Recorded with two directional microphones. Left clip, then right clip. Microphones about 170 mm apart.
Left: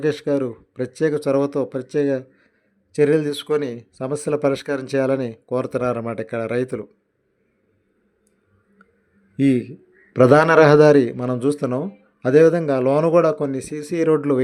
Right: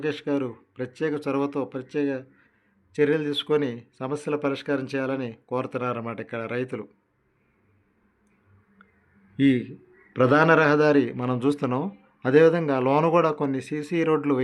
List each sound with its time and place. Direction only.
0.0 s speech: 35° left (ahead or behind)
9.4 s a man's voice: 25° left (ahead or behind)